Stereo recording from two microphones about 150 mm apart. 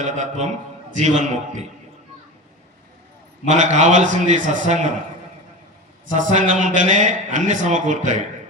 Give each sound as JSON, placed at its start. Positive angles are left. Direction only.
{"t": 0.0, "sound": "a man's voice", "side_deg": -50}
{"t": 3.5, "sound": "a man's voice", "side_deg": -55}
{"t": 6.1, "sound": "a man's voice", "side_deg": -55}